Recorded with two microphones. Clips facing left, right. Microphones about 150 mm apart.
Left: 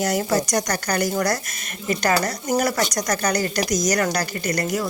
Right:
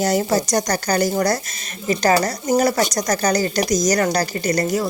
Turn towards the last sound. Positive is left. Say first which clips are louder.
# right 4 dB
turn(degrees=-30)  # may be behind; listen again after turning